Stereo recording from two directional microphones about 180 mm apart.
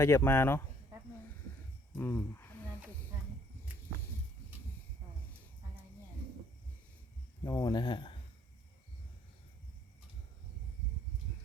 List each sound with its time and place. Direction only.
0.0 s speech: 15° left (ahead or behind)
2.0 s speech: 10° left (ahead or behind)
7.4 s speech: 20° left (ahead or behind)